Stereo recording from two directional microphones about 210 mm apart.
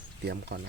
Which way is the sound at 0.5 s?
55° right (ahead or behind).